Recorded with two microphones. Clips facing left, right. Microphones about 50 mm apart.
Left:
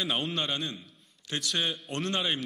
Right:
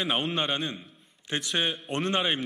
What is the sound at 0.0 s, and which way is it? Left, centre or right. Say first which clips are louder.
A man's voice: right 3 dB; right.